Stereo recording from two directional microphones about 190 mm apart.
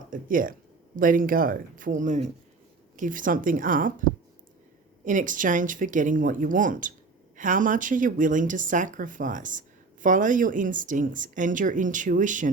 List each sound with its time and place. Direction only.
0.1 s speech: 45° right (ahead or behind)